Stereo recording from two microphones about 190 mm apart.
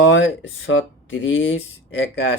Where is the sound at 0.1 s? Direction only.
80° left.